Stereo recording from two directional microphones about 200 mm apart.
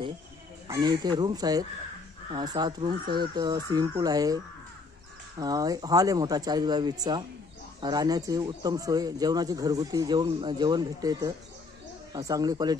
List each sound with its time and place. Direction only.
0.7 s speech: 20° right (ahead or behind)
5.4 s speech: 20° right (ahead or behind)